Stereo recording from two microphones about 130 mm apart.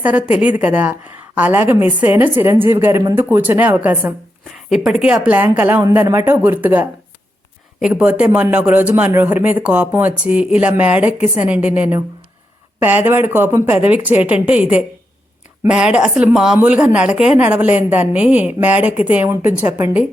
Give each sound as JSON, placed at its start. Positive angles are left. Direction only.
{"t": 0.0, "sound": "a man's voice", "side_deg": -10}
{"t": 4.5, "sound": "a man's voice", "side_deg": -5}